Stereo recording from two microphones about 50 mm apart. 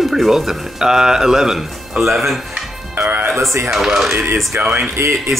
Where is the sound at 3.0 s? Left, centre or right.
Right.